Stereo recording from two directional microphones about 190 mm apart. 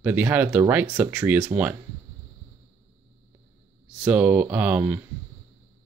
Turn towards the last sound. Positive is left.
turn(degrees=-5)  # may be behind; listen again after turning